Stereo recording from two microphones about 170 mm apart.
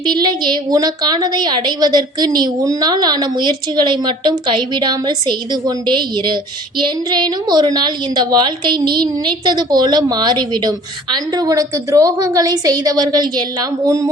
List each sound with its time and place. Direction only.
0.0 s a woman's voice: 25° right (ahead or behind)